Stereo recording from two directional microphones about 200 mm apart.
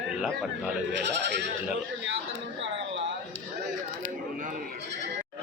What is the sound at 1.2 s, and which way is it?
Speech, 60° right (ahead or behind).